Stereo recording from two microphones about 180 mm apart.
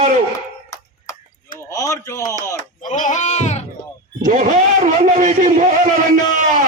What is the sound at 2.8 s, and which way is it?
Sheep, 45° left (ahead or behind).